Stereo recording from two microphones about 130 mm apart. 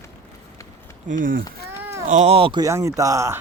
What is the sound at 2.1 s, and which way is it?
Speech, 65° right (ahead or behind).